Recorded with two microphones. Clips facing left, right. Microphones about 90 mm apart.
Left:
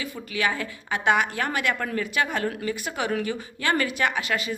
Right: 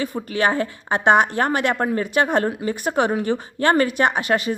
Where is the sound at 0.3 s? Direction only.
40° right (ahead or behind).